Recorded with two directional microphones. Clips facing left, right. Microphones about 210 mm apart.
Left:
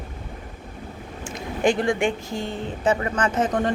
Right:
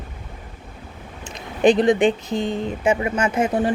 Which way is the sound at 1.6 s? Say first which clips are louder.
Right 6 dB; 20° right (ahead or behind).